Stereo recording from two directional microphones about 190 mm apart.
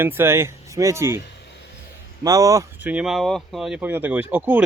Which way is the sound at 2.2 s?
20° right (ahead or behind).